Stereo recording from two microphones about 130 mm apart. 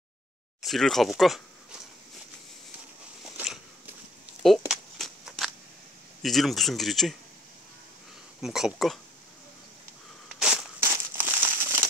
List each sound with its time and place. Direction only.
0.6 s speech: centre (ahead or behind)
4.4 s a sound: centre (ahead or behind)
6.2 s speech: centre (ahead or behind)
8.4 s speech: 5° right (ahead or behind)
10.8 s crumpling: 15° right (ahead or behind)